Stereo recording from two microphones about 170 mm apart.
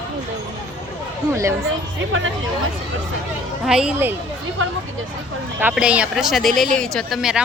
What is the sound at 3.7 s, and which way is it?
Speech, 5° right (ahead or behind).